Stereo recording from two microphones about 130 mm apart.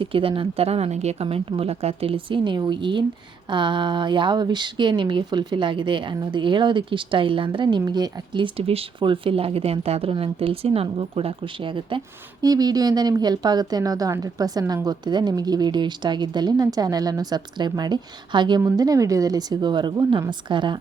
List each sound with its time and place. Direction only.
0.0 s speech: 45° right (ahead or behind)
8.5 s speech: 45° right (ahead or behind)